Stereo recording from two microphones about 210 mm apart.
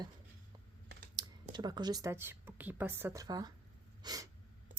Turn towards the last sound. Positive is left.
turn(degrees=-20)  # may be behind; listen again after turning